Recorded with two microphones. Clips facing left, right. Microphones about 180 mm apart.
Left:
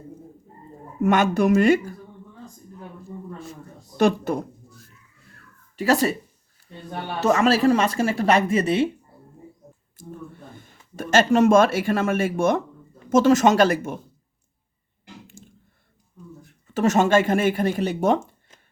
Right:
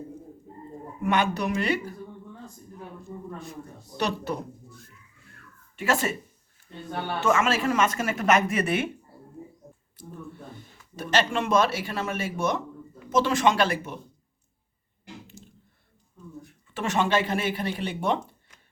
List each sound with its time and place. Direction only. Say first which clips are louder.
1.0 s speech: left 7 dB; 45° left (ahead or behind)
3.9 s speech: left 8 dB; 50° left (ahead or behind)
5.7 s speech: left 6 dB; 35° left (ahead or behind)
7.2 s speech: left 6 dB; 40° left (ahead or behind)
10.9 s speech: left 7 dB; 45° left (ahead or behind)
15.4 s a sound: left 1 dB; 50° left (ahead or behind)
16.7 s speech: left 7 dB; 40° left (ahead or behind)